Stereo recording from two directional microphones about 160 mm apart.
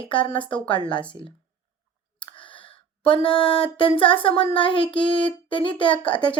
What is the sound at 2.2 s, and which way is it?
Clicking, 30° left (ahead or behind).